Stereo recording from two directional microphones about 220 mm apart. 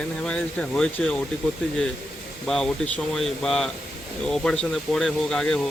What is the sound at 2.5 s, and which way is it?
Speech, 5° left (ahead or behind).